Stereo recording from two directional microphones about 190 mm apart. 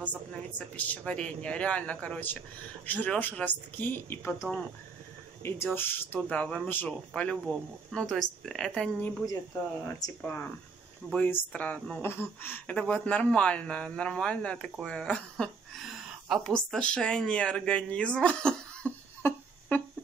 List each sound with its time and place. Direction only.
0.6 s a man's voice: 10° left (ahead or behind)
9.8 s speech: 20° left (ahead or behind)
10.2 s a man's voice: 10° left (ahead or behind)